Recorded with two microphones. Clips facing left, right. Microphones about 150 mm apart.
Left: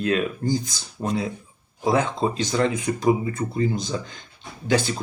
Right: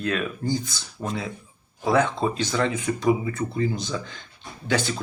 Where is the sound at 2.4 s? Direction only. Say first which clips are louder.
Left 2 dB; 40° left (ahead or behind).